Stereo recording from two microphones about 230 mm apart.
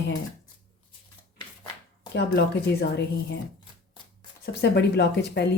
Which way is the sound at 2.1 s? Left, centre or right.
Left.